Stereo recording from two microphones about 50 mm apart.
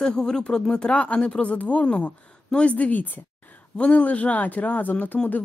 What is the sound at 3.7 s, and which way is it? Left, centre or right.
Speech, left.